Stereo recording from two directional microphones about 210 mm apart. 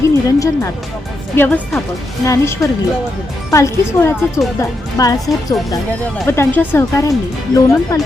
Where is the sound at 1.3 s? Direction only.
10° left (ahead or behind).